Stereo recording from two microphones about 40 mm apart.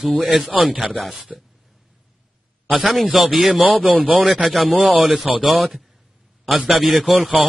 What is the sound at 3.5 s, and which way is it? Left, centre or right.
A man's voice, right.